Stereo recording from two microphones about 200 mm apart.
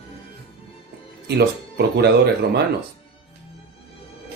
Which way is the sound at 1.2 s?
55° right (ahead or behind).